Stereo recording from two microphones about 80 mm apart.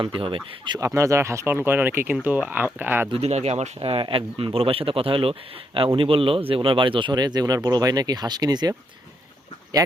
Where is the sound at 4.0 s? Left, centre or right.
Right.